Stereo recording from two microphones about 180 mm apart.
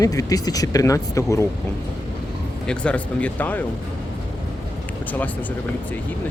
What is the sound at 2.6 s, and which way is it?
Speech, 5° left (ahead or behind).